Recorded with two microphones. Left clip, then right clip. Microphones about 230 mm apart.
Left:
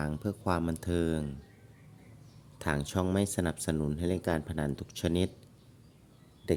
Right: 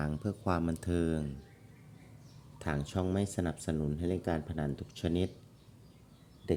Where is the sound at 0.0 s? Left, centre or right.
Centre.